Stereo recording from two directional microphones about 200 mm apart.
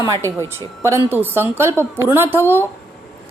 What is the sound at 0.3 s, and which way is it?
A woman's voice, 15° right (ahead or behind).